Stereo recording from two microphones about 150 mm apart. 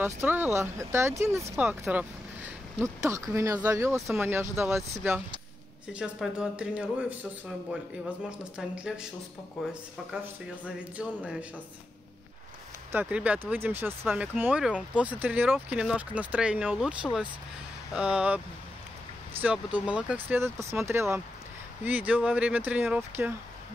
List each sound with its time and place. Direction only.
0.0 s speech: 15° right (ahead or behind)
5.9 s speech: centre (ahead or behind)
12.9 s speech: 10° right (ahead or behind)
19.4 s speech: 10° right (ahead or behind)